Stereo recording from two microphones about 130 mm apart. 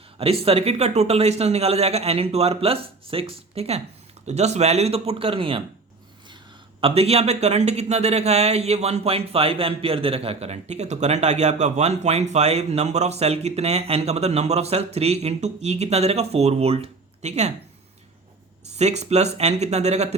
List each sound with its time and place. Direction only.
0.2 s speech: 50° right (ahead or behind)
6.8 s a man's voice: 50° right (ahead or behind)
18.8 s a man's voice: 60° right (ahead or behind)